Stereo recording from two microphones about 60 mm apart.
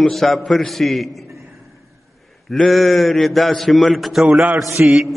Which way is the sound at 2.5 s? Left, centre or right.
Centre.